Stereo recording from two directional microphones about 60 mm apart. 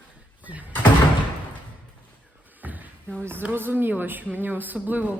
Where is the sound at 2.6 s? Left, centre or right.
Right.